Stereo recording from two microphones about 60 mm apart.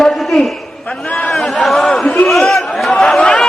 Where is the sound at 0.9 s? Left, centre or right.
Left.